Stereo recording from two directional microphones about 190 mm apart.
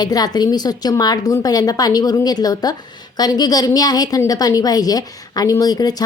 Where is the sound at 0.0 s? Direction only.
20° left (ahead or behind).